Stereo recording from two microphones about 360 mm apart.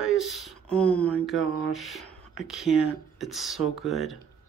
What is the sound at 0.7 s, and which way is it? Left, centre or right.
Speech, centre.